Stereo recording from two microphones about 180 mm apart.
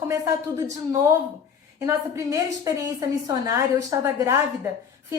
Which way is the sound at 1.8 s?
15° right (ahead or behind).